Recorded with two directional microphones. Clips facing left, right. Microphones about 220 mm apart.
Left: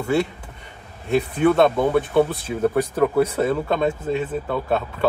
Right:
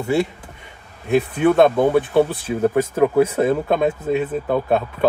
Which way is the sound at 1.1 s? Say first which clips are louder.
Right 2 dB; 5° right (ahead or behind).